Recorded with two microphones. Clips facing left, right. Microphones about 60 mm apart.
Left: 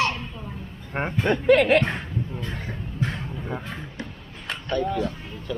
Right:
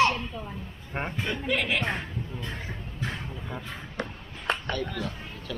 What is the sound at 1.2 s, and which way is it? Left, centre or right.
Speech, left.